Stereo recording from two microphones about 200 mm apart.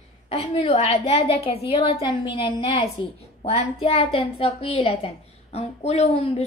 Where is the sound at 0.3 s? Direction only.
30° left (ahead or behind).